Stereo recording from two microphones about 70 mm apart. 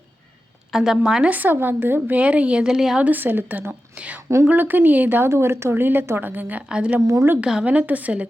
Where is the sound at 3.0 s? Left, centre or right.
Right.